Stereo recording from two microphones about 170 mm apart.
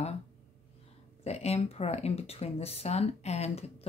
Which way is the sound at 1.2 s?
40° left (ahead or behind).